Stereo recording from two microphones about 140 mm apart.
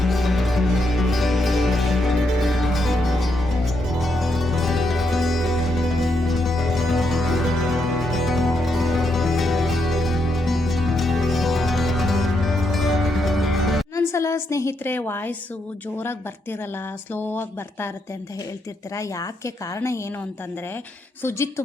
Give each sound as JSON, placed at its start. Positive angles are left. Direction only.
{"t": 0.0, "sound": "music", "side_deg": 0}
{"t": 14.1, "sound": "a woman's voice", "side_deg": 20}
{"t": 21.2, "sound": "a woman's voice", "side_deg": 20}